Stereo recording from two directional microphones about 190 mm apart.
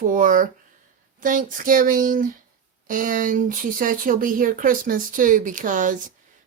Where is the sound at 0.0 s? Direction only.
45° right (ahead or behind).